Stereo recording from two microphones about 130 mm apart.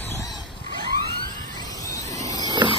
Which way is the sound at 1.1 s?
35° right (ahead or behind).